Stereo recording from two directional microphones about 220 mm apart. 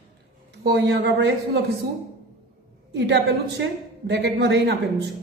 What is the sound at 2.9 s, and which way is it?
A man's voice, 50° right (ahead or behind).